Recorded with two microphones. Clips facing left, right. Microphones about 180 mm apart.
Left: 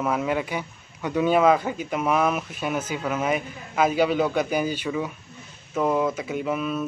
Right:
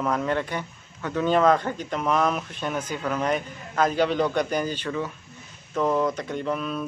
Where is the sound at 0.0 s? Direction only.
5° left (ahead or behind).